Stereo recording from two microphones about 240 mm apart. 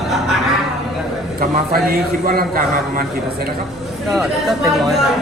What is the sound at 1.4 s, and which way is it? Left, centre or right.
Speech, right.